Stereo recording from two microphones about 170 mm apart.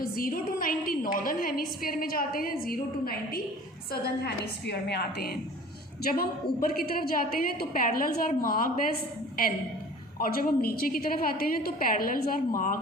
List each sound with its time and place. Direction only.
0.0 s a woman's voice: 60° left (ahead or behind)
10.2 s a woman's voice: 60° left (ahead or behind)